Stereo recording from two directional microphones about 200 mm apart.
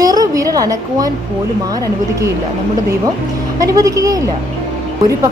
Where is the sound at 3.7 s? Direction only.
15° right (ahead or behind).